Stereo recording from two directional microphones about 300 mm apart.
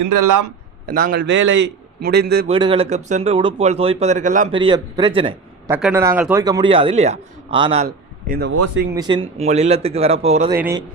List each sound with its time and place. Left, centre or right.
0.0 s a man's voice: right
0.9 s a man's voice: right
2.5 s a man's voice: centre
8.3 s a man's voice: right
8.9 s speech: centre
10.5 s a man's voice: centre